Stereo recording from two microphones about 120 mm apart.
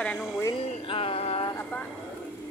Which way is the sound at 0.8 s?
50° left (ahead or behind).